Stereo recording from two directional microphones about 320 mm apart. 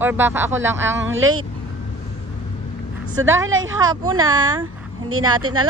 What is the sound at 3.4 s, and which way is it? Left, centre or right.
Speech, right.